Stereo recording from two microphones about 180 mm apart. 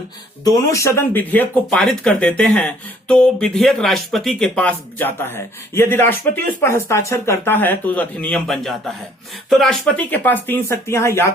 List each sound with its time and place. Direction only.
0.4 s speech: 15° left (ahead or behind)